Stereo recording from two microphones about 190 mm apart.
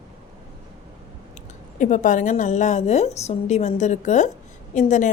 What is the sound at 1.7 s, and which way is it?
A woman's voice, 40° left (ahead or behind).